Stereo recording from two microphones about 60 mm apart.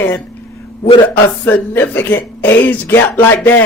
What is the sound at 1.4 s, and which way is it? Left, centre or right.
A woman's voice, left.